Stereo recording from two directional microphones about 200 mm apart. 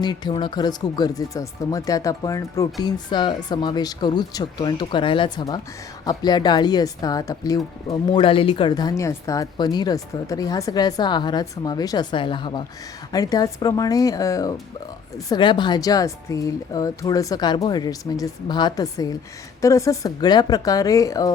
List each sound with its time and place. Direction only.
0.0 s speech: 20° left (ahead or behind)